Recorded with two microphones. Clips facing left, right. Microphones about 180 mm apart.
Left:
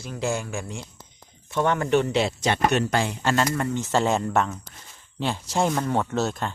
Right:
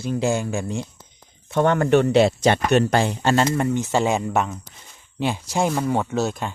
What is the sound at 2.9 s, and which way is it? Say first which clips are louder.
Speech: right 4 dB; 35° right (ahead or behind).